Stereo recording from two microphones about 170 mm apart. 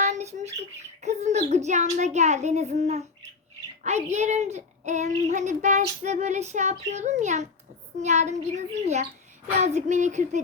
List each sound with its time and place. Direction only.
0.0 s speech: 40° right (ahead or behind)